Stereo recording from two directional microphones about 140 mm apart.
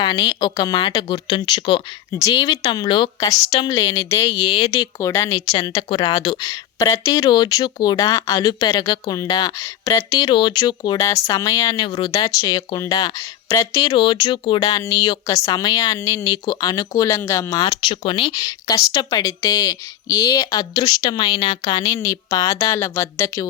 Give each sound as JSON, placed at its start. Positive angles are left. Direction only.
{"t": 0.0, "sound": "speech", "side_deg": 35}
{"t": 4.4, "sound": "speech", "side_deg": 40}
{"t": 4.7, "sound": "speech", "side_deg": 25}
{"t": 9.6, "sound": "speech", "side_deg": 20}
{"t": 11.9, "sound": "speech", "side_deg": 35}
{"t": 12.1, "sound": "speech", "side_deg": 25}
{"t": 17.7, "sound": "speech", "side_deg": 40}